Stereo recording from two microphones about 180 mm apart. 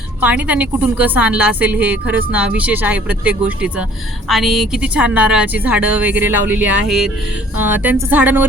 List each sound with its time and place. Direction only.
0.2 s speech: 10° right (ahead or behind)